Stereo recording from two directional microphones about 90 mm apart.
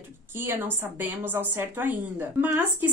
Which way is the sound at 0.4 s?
25° right (ahead or behind).